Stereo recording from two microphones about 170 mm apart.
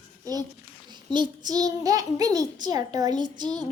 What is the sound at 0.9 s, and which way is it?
A child's voice, 25° right (ahead or behind).